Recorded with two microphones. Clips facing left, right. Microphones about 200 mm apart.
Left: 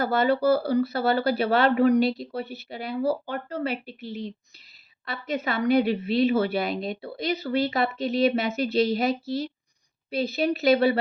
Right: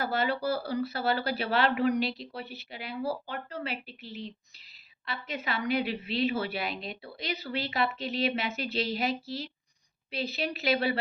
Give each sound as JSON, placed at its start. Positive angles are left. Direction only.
{"t": 0.0, "sound": "a woman's voice", "side_deg": 45}